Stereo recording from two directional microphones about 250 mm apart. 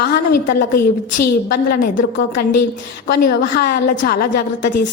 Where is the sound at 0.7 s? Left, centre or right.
Left.